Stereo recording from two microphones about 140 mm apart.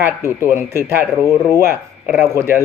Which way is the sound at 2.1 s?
20° right (ahead or behind).